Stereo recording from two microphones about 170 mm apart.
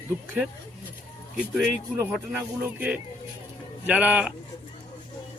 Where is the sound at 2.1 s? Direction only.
10° right (ahead or behind).